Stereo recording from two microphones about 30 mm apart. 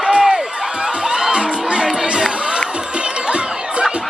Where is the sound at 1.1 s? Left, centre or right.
Centre.